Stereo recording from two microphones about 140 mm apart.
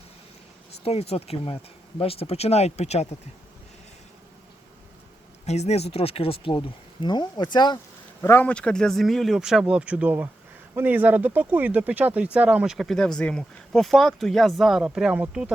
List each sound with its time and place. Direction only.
0.9 s speech: 45° left (ahead or behind)
5.5 s speech: 50° left (ahead or behind); by 7.8 s 30° left (ahead or behind)
8.2 s speech: 15° left (ahead or behind); by 15.5 s 5° right (ahead or behind)